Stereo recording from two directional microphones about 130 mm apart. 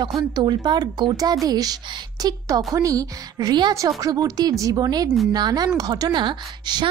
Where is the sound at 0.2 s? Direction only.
35° right (ahead or behind).